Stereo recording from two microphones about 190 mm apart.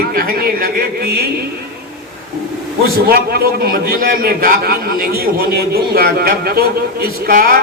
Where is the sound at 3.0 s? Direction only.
55° right (ahead or behind).